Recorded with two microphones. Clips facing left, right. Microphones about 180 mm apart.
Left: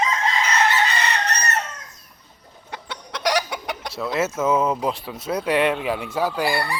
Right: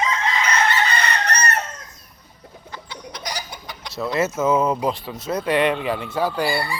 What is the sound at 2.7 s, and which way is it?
Chicken, 70° left (ahead or behind).